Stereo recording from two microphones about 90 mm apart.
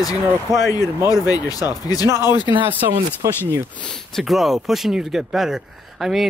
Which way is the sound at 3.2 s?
35° right (ahead or behind).